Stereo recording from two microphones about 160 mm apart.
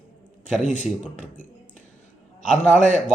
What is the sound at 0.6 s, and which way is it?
Speech, 50° left (ahead or behind).